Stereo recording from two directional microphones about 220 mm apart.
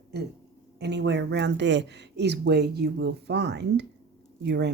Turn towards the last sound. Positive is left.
turn(degrees=-50)  # may be behind; listen again after turning